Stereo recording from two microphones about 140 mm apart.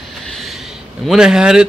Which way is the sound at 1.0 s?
5° right (ahead or behind).